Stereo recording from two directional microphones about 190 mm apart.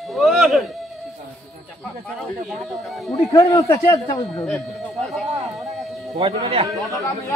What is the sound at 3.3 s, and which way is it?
A man's voice, 20° left (ahead or behind).